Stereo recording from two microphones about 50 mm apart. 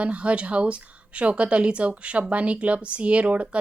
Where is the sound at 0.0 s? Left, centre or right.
Right.